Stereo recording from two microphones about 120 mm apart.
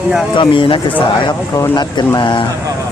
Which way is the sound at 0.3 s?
45° left (ahead or behind).